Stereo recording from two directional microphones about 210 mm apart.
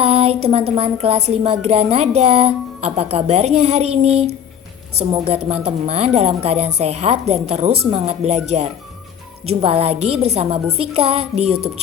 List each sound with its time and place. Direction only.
0.0 s a sound: 30° right (ahead or behind)
0.4 s speech: 30° right (ahead or behind)
9.5 s speech: 30° right (ahead or behind)